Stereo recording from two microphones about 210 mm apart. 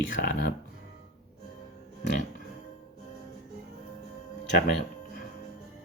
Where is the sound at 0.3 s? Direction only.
45° left (ahead or behind).